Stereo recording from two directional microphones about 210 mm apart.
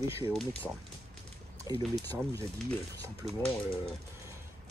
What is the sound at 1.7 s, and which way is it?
Speech, 15° right (ahead or behind).